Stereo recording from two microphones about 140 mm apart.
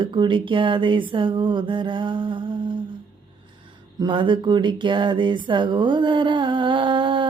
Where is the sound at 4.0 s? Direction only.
35° right (ahead or behind).